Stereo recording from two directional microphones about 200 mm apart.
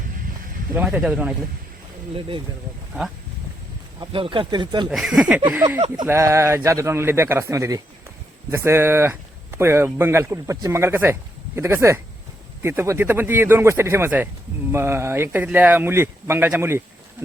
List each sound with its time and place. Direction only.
0.7 s speech: 5° right (ahead or behind)
2.1 s speech: 25° right (ahead or behind)
4.0 s speech: 25° right (ahead or behind)
4.9 s speech: centre (ahead or behind)